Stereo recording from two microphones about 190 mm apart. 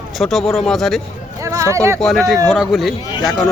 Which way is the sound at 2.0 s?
Centre (ahead or behind).